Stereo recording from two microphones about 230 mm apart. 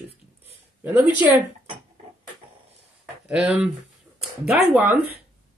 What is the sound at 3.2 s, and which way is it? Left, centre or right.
Speech, centre.